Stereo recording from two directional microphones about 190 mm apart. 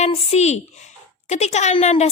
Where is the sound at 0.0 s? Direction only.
35° left (ahead or behind).